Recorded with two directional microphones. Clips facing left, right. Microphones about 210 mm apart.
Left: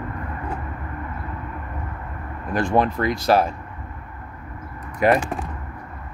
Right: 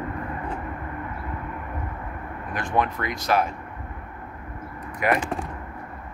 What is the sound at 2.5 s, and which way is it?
Speech, 30° left (ahead or behind).